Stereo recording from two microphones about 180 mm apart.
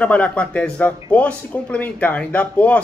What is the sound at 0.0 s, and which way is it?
Speech, 5° left (ahead or behind).